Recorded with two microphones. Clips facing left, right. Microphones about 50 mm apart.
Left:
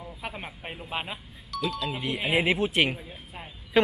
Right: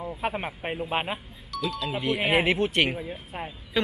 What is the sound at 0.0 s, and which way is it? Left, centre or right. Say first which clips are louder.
Speech: right 8 dB; right.